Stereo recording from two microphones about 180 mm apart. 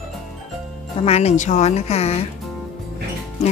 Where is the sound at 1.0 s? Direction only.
35° left (ahead or behind).